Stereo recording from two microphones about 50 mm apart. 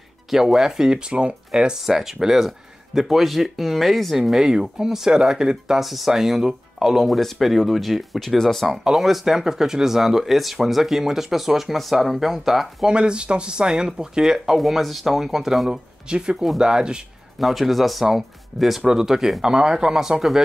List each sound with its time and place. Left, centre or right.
0.3 s speech: centre
5.8 s speech: centre
12.8 s speech: centre
17.4 s speech: centre